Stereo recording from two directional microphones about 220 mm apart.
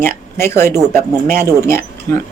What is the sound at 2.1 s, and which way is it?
Speech, 40° right (ahead or behind).